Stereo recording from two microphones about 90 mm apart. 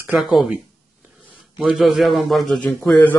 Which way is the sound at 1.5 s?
Centre (ahead or behind).